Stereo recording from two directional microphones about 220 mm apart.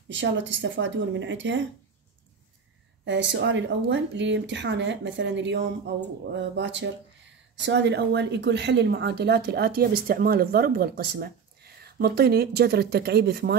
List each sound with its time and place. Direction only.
0.1 s a woman's voice: 55° right (ahead or behind)
3.1 s a woman's voice: 55° right (ahead or behind)